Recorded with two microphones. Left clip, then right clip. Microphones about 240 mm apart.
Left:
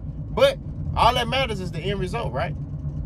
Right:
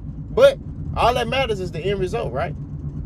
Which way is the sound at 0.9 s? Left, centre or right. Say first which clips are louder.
Right 1 dB; centre.